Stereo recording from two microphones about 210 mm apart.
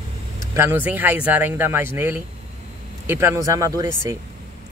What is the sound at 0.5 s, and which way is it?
Speech, 10° right (ahead or behind).